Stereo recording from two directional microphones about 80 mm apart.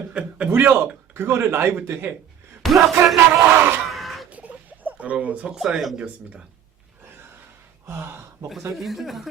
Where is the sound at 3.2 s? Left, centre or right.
Right.